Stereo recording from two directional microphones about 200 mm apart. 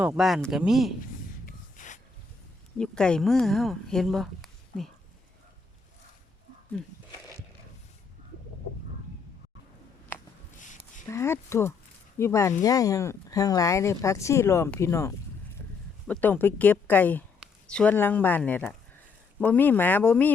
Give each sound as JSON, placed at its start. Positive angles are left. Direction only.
{"t": 0.0, "sound": "speech", "side_deg": -5}
{"t": 1.5, "sound": "snort", "side_deg": 40}
{"t": 2.7, "sound": "speech", "side_deg": 5}
{"t": 11.1, "sound": "speech", "side_deg": 15}